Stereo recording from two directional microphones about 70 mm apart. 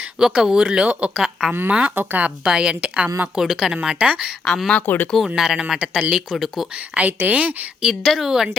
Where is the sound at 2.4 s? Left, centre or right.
Centre.